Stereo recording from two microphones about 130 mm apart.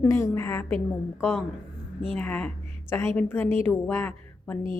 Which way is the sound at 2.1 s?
10° left (ahead or behind).